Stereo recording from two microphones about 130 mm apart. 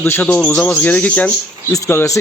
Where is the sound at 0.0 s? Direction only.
15° left (ahead or behind).